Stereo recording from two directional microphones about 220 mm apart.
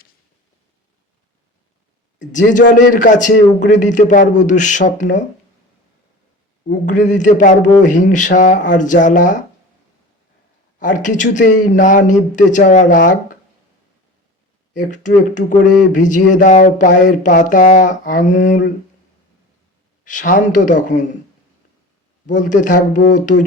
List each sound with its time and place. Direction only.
2.3 s speech: 35° left (ahead or behind)
6.8 s speech: 35° left (ahead or behind)
10.8 s speech: 35° left (ahead or behind)
14.8 s speech: 35° left (ahead or behind)
20.1 s speech: 35° left (ahead or behind)
22.3 s speech: 35° left (ahead or behind)